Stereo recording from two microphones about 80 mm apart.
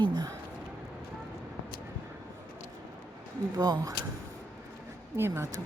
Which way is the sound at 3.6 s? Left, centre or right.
Right.